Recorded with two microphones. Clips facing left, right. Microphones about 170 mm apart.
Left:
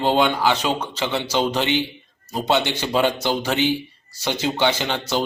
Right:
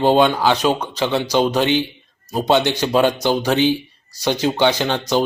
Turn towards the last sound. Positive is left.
turn(degrees=-15)  # may be behind; listen again after turning